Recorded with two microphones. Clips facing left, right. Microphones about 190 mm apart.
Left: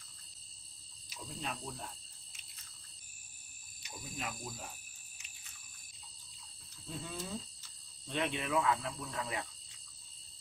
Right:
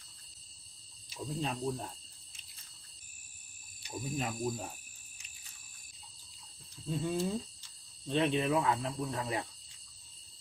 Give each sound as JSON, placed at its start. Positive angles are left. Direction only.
{"t": 1.1, "sound": "speech", "side_deg": -30}
{"t": 3.8, "sound": "speech", "side_deg": -35}
{"t": 6.8, "sound": "speech", "side_deg": -30}